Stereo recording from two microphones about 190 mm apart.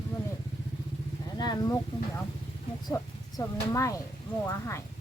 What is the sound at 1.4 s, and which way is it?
Speech, 20° left (ahead or behind).